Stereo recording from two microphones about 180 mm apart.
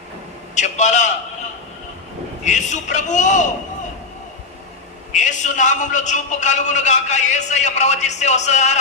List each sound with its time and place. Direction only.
0.5 s a man's voice: 40° left (ahead or behind)
2.4 s a man's voice: 40° left (ahead or behind)
5.1 s a man's voice: 45° left (ahead or behind)